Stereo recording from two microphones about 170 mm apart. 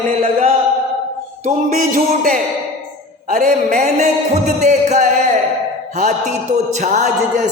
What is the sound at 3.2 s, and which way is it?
Speech, 55° right (ahead or behind).